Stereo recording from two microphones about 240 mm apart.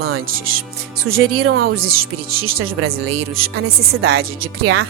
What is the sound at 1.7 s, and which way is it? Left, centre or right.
Speech, right.